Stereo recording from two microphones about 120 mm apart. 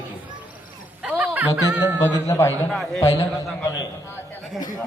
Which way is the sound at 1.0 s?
15° right (ahead or behind).